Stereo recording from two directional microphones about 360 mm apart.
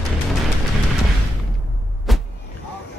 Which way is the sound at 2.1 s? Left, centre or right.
Centre.